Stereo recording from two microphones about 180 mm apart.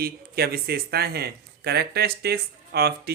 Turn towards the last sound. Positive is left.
turn(degrees=-60)  # may be behind; listen again after turning